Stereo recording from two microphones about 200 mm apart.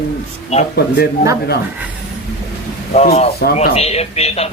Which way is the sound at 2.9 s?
35° left (ahead or behind).